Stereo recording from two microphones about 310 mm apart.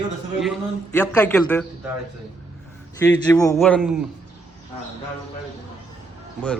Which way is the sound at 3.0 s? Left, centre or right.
Centre.